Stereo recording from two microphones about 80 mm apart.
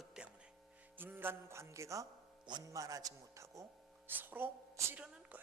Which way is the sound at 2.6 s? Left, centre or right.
Right.